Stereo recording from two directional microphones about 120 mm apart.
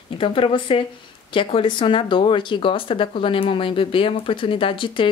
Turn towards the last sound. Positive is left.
turn(degrees=45)  # may be behind; listen again after turning